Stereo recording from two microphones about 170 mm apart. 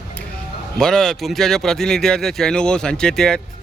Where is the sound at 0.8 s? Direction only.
Centre (ahead or behind).